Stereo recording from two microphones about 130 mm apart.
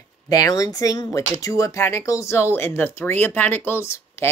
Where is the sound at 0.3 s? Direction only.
30° left (ahead or behind).